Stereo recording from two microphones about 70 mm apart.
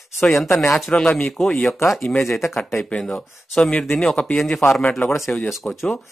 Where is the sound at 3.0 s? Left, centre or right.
Centre.